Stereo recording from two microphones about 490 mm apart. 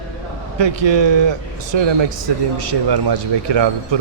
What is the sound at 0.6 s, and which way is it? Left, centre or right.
Speech, right.